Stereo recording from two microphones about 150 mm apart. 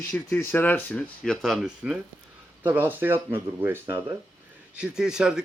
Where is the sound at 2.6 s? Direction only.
15° right (ahead or behind).